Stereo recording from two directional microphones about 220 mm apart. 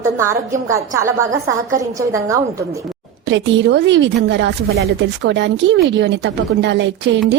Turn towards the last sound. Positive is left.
turn(degrees=-55)  # may be behind; listen again after turning